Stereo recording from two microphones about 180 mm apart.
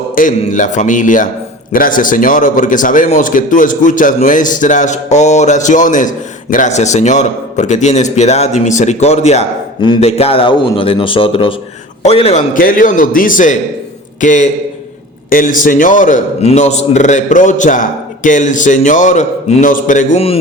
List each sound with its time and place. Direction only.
0.2 s a man's voice: 45° left (ahead or behind)